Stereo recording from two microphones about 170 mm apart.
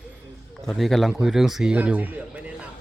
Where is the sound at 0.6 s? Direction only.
Centre (ahead or behind).